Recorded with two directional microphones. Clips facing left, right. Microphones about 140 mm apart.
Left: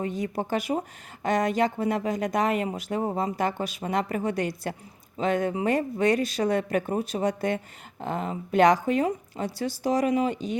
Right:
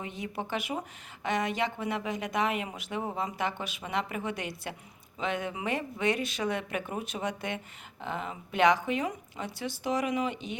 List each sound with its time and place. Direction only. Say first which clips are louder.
0.0 s speech: left 8 dB; 40° left (ahead or behind)